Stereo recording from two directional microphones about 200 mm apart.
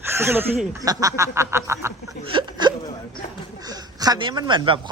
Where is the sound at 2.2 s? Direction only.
25° right (ahead or behind).